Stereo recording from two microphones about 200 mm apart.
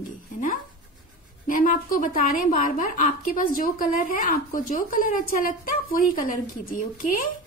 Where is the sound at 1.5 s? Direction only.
45° left (ahead or behind).